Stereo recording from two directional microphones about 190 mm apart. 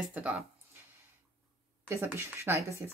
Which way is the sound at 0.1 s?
5° right (ahead or behind).